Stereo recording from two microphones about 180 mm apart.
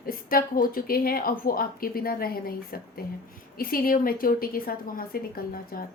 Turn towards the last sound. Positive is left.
turn(degrees=55)  # may be behind; listen again after turning